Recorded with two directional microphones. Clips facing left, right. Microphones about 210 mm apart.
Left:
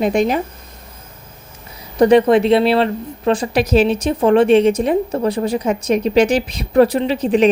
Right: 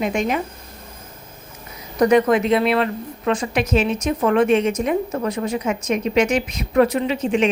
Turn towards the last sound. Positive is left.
turn(degrees=35)  # may be behind; listen again after turning